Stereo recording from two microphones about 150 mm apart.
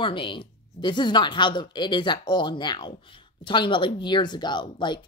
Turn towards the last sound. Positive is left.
turn(degrees=30)  # may be behind; listen again after turning